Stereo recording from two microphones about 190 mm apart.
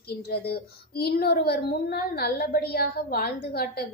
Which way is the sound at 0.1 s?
55° left (ahead or behind).